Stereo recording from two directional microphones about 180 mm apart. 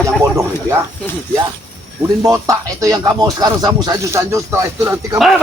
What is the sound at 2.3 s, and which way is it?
Speech, 20° right (ahead or behind).